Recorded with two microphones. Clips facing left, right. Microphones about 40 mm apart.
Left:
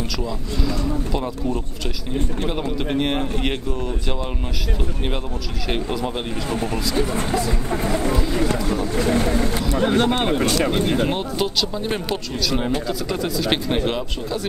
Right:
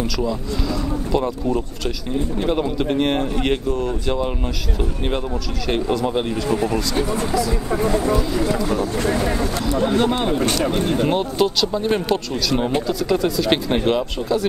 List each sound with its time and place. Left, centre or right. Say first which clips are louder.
1.1 s speech: right 4 dB; centre
5.7 s speech: right 4 dB; centre
7.1 s speech: right 2 dB; left
7.8 s speech: right 4 dB; left
11.1 s speech: right 4 dB; centre